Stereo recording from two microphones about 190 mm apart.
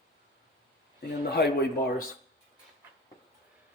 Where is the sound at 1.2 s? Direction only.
60° left (ahead or behind).